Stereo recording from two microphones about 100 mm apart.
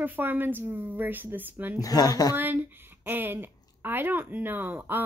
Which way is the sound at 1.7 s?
40° left (ahead or behind).